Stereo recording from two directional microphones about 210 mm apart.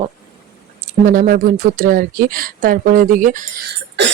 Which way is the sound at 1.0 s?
40° right (ahead or behind).